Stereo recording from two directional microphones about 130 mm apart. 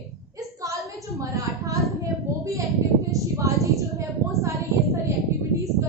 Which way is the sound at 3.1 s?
25° right (ahead or behind).